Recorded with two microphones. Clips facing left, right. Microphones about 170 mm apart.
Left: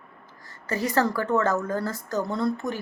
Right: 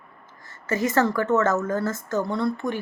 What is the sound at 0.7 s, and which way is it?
A woman's voice, 35° left (ahead or behind).